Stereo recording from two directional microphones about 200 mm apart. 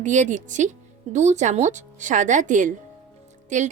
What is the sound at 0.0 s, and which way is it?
Speech, 40° right (ahead or behind).